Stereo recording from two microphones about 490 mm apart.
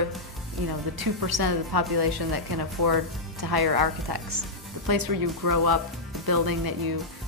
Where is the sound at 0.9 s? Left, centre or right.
Right.